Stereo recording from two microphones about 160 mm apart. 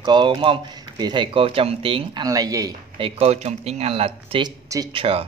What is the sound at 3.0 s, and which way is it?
Speech, 40° right (ahead or behind).